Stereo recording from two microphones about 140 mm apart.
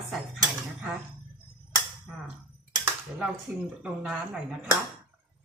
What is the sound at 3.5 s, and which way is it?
Dishes, 15° right (ahead or behind).